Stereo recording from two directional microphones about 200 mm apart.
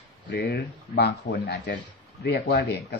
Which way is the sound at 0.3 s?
50° left (ahead or behind).